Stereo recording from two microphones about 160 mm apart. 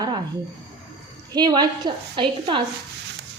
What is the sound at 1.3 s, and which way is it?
A woman's voice, 25° right (ahead or behind).